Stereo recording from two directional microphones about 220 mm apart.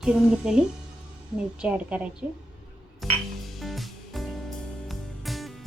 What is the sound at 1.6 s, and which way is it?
Speech, 5° right (ahead or behind).